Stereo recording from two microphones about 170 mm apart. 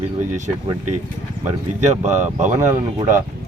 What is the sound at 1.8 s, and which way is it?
Speech, 45° right (ahead or behind).